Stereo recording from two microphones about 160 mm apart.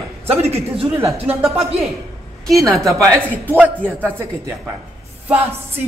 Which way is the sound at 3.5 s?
10° right (ahead or behind).